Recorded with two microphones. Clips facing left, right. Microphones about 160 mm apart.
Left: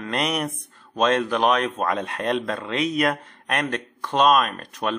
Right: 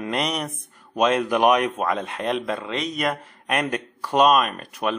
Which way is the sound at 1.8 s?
Centre (ahead or behind).